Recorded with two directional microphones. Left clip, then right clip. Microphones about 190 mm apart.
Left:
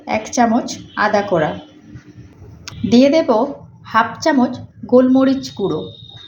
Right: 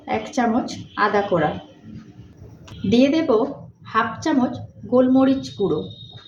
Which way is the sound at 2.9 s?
30° left (ahead or behind).